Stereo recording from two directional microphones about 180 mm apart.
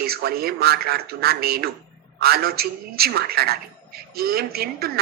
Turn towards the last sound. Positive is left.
turn(degrees=-60)  # may be behind; listen again after turning